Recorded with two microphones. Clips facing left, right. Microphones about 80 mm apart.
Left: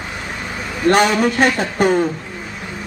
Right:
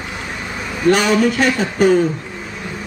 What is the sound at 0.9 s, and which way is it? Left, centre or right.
Speech, left.